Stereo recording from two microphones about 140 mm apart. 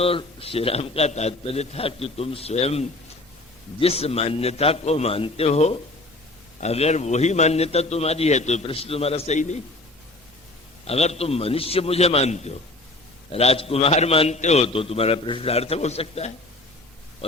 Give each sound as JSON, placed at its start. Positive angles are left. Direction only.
{"t": 0.0, "sound": "a man's voice", "side_deg": 40}
{"t": 10.8, "sound": "a man's voice", "side_deg": 50}